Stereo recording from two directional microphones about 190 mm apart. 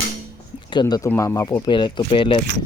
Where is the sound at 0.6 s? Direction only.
20° left (ahead or behind).